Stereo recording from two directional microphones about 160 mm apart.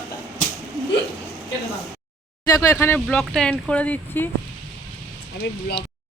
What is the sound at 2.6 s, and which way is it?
Speech, 15° left (ahead or behind).